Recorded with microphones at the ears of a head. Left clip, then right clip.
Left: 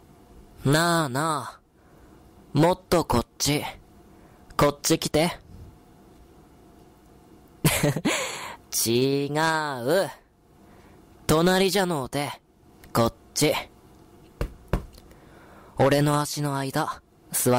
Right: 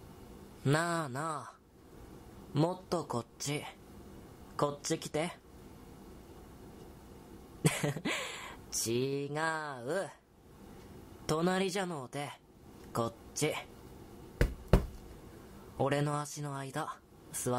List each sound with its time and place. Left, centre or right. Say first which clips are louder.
0.6 s speech: left 10 dB; left
7.6 s a sound: left 10 dB; left
11.2 s speech: left 11 dB; left
15.7 s speech: left 12 dB; left